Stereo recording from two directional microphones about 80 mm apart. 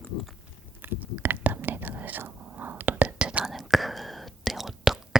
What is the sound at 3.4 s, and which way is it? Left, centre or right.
Whispering, centre.